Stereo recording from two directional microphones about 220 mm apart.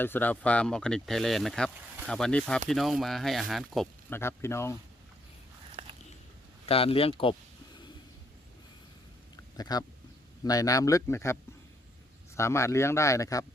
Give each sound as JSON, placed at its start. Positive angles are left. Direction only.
{"t": 0.0, "sound": "speech", "side_deg": 10}
{"t": 4.1, "sound": "speech", "side_deg": 10}
{"t": 6.7, "sound": "speech", "side_deg": 25}
{"t": 9.3, "sound": "a sound", "side_deg": 15}
{"t": 10.4, "sound": "speech", "side_deg": 15}
{"t": 12.4, "sound": "speech", "side_deg": 10}